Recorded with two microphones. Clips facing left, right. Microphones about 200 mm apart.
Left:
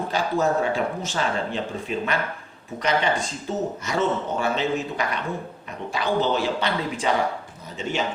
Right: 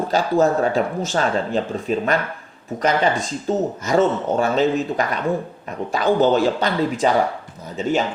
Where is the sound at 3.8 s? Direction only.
45° right (ahead or behind).